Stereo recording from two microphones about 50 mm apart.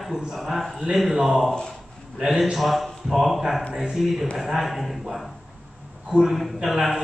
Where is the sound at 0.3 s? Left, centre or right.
Centre.